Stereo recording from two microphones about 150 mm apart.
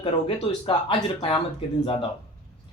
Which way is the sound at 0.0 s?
35° left (ahead or behind).